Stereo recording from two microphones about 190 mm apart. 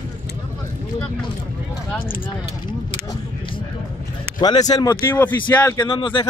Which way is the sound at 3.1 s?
25° left (ahead or behind).